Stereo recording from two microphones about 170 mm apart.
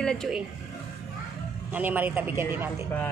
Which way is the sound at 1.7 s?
10° right (ahead or behind).